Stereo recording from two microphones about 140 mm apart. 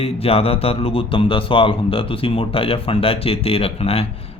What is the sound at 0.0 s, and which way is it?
Speech, 45° left (ahead or behind).